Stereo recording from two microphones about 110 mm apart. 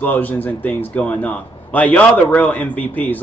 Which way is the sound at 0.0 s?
15° left (ahead or behind).